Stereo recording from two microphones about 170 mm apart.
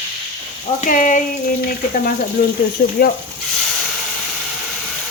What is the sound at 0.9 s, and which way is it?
Speech, 50° left (ahead or behind).